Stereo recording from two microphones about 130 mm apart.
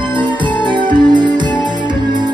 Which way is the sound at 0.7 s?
35° right (ahead or behind).